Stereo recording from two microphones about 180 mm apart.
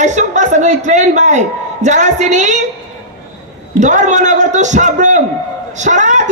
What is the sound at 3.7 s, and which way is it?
A man's voice, 40° right (ahead or behind).